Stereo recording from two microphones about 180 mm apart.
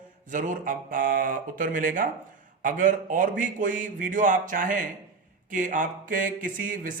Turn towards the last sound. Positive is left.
turn(degrees=-50)  # may be behind; listen again after turning